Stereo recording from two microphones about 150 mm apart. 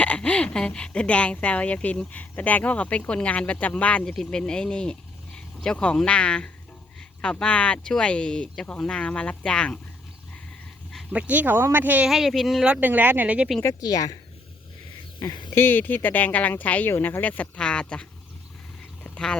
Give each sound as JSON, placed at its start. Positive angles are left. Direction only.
{"t": 0.0, "sound": "speech", "side_deg": 10}
{"t": 10.9, "sound": "speech", "side_deg": -10}
{"t": 13.6, "sound": "speech", "side_deg": 20}
{"t": 15.2, "sound": "speech", "side_deg": 30}
{"t": 15.5, "sound": "speech", "side_deg": 15}
{"t": 19.0, "sound": "duck", "side_deg": 5}